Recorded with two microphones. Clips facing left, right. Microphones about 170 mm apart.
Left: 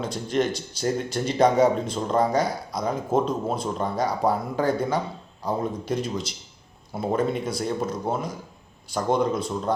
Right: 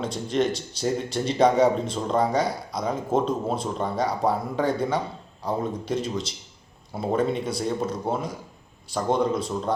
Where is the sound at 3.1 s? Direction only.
30° right (ahead or behind).